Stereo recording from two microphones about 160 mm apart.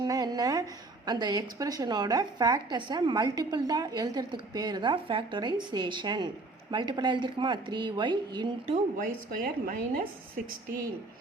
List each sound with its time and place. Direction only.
0.0 s a sound: 25° right (ahead or behind)
1.0 s a woman's voice: 25° right (ahead or behind)
9.0 s a woman's voice: 60° right (ahead or behind)